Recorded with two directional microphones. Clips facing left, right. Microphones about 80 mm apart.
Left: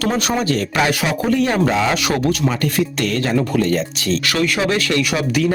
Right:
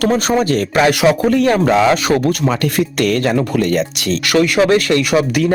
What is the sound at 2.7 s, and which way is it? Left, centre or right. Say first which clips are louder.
Speech: right 4 dB; right.